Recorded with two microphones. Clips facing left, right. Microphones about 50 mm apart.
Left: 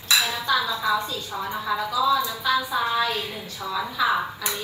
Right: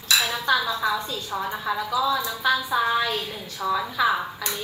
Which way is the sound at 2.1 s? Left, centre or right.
Right.